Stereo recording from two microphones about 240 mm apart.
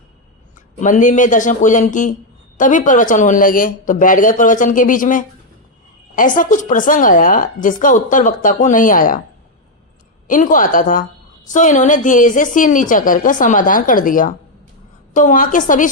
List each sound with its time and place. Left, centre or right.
0.8 s a woman's voice: left
10.2 s a woman's voice: left